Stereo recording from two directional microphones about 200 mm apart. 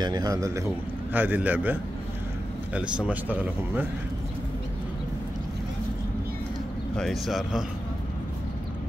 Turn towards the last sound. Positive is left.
turn(degrees=0)  # may be behind; listen again after turning